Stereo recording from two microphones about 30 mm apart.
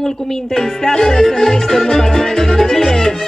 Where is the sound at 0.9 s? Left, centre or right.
Left.